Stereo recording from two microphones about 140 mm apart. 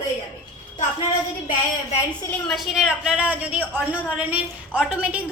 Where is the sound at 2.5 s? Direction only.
5° right (ahead or behind).